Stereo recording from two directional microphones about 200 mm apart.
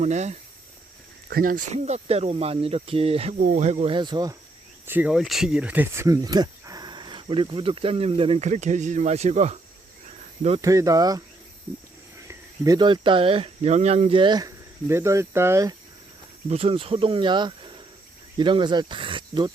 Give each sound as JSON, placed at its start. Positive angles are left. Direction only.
{"t": 0.0, "sound": "speech", "side_deg": -35}
{"t": 1.3, "sound": "speech", "side_deg": -45}
{"t": 4.9, "sound": "speech", "side_deg": -5}
{"t": 10.6, "sound": "speech", "side_deg": -15}
{"t": 12.3, "sound": "speech", "side_deg": -20}
{"t": 16.5, "sound": "speech", "side_deg": -30}